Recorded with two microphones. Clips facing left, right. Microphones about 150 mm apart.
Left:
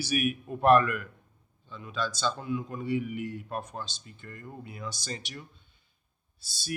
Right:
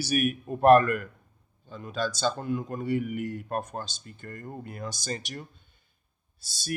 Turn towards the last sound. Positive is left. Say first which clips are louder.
# right 3 dB
turn(degrees=-45)  # may be behind; listen again after turning